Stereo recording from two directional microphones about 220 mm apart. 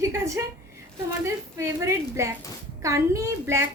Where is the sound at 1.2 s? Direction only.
15° right (ahead or behind).